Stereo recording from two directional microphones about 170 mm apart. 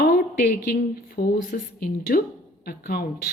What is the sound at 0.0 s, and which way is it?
A woman's voice, 65° left (ahead or behind).